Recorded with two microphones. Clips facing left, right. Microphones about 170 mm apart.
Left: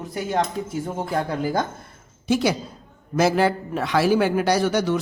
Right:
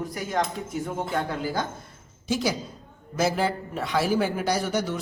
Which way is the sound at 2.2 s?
65° left (ahead or behind).